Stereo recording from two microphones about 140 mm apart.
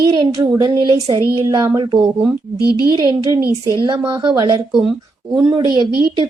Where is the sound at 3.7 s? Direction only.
35° right (ahead or behind).